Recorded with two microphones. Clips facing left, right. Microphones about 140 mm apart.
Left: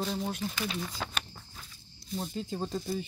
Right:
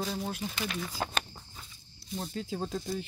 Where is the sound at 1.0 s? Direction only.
40° right (ahead or behind).